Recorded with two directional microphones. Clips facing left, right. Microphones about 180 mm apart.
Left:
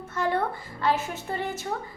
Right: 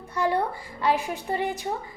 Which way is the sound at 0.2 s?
15° right (ahead or behind).